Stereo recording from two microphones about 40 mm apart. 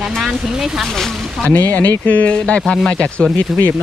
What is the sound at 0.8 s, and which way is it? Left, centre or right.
Speech, centre.